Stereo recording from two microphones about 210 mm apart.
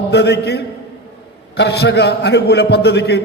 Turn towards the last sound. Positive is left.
turn(degrees=50)  # may be behind; listen again after turning